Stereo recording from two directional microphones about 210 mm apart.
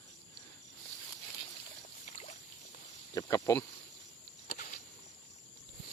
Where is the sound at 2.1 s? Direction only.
35° left (ahead or behind).